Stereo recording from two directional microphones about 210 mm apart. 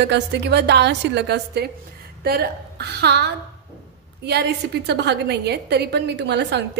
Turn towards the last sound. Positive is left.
turn(degrees=-55)  # may be behind; listen again after turning